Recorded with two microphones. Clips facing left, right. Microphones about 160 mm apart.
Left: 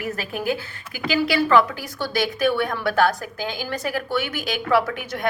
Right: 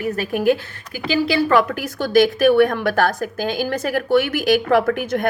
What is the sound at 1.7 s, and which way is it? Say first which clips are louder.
A woman's voice: right 9 dB; 50° right (ahead or behind).